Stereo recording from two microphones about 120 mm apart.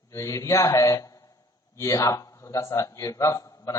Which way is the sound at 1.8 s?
25° left (ahead or behind).